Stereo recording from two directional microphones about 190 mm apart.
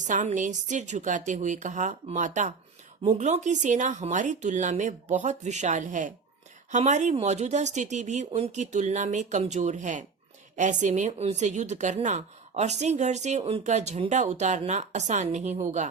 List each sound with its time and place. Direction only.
0.0 s a woman's voice: 40° right (ahead or behind)